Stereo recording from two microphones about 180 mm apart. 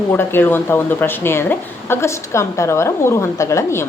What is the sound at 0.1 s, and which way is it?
A woman's voice, 10° left (ahead or behind).